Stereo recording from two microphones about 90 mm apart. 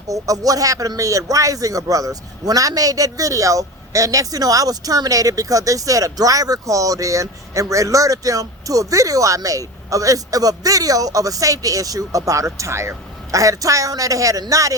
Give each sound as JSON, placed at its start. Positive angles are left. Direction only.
{"t": 0.1, "sound": "speech", "side_deg": -40}